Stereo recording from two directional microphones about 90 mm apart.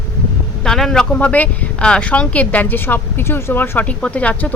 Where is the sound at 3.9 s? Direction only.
15° left (ahead or behind).